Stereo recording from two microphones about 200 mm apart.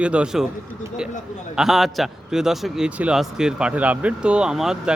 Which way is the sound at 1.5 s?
Centre (ahead or behind).